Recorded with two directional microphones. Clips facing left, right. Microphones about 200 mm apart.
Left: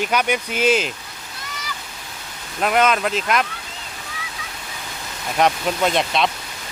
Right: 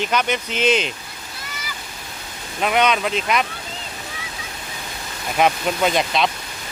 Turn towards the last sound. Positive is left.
turn(degrees=0)  # may be behind; listen again after turning